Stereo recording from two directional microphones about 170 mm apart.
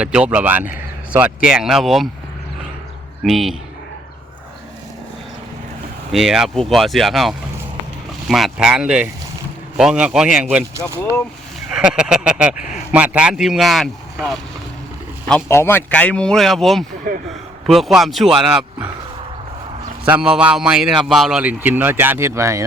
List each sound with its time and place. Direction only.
0.0 s a man's voice: 5° right (ahead or behind)
3.2 s speech: centre (ahead or behind)
6.1 s speech: centre (ahead or behind)
11.7 s a man's voice: 5° right (ahead or behind)
15.3 s speech: 10° left (ahead or behind)
17.1 s speech: 60° right (ahead or behind)
17.7 s speech: centre (ahead or behind)
20.1 s a man's voice: 5° right (ahead or behind)